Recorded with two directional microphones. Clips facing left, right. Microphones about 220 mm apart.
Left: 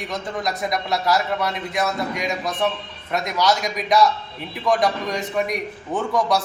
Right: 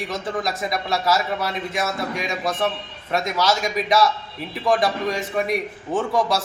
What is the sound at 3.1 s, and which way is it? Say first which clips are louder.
A man's voice: even; centre (ahead or behind).